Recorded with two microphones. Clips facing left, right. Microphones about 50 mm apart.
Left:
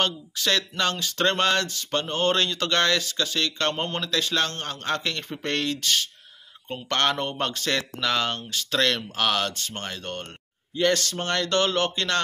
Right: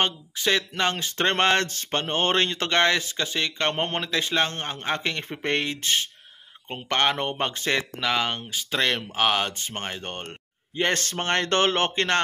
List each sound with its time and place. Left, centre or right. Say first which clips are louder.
0.0 s speech: right 1 dB; right